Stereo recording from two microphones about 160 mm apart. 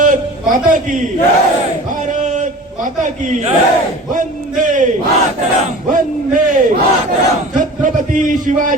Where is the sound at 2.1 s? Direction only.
50° right (ahead or behind).